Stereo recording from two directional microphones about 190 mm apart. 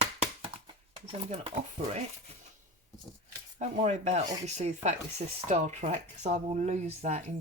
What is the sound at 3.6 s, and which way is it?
Speech, 35° right (ahead or behind).